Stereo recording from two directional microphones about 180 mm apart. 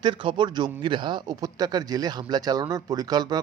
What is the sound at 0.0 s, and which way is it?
A man's voice, 25° right (ahead or behind).